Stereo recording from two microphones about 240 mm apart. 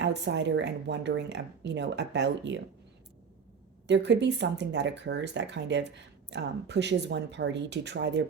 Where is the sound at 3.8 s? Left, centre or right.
Right.